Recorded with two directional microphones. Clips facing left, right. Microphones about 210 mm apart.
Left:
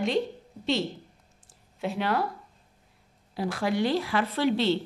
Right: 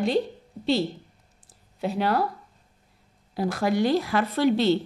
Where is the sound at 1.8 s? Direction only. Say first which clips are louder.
Right 3 dB; 40° right (ahead or behind).